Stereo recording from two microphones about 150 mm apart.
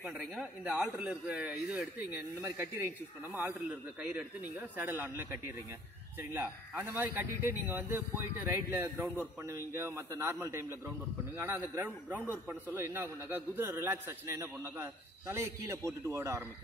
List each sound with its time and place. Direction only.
0.0 s a man's voice: 5° right (ahead or behind)